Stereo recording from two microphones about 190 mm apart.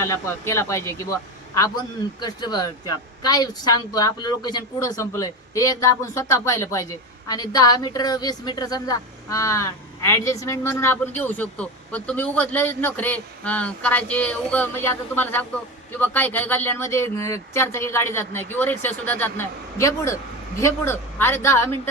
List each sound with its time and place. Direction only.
0.0 s a woman's voice: 15° left (ahead or behind)